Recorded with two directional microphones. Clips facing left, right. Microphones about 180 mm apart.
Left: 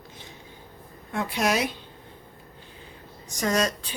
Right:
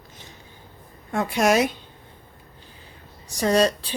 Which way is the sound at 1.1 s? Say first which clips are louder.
Right 5 dB; 45° right (ahead or behind).